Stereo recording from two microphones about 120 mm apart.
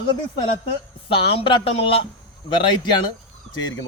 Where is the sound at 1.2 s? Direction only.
45° left (ahead or behind).